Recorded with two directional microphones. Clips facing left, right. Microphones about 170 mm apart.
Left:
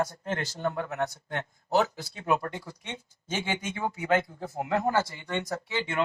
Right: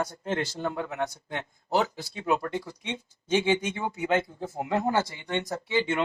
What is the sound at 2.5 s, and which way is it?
Speech, 20° right (ahead or behind).